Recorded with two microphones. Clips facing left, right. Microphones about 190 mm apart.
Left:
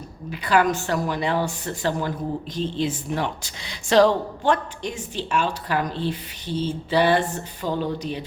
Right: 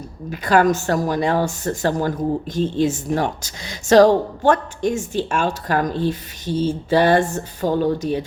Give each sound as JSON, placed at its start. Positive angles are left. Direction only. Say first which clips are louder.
{"t": 0.3, "sound": "a woman's voice", "louder": "right 4 dB", "side_deg": -45}